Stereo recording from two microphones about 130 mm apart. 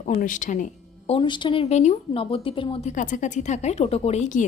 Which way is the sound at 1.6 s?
60° left (ahead or behind).